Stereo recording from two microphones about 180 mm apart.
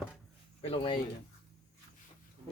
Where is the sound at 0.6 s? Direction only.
30° left (ahead or behind).